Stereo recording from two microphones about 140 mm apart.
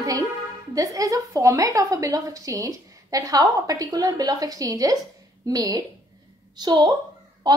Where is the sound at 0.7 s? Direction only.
25° right (ahead or behind).